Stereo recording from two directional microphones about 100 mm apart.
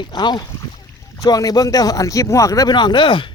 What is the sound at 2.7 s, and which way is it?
Speech, 50° left (ahead or behind).